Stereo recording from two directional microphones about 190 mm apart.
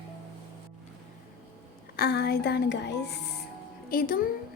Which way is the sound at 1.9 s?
55° left (ahead or behind).